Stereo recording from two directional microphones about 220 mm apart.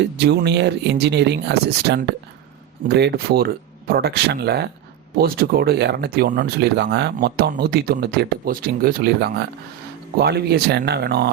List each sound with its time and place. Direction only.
0.0 s speech: 50° right (ahead or behind)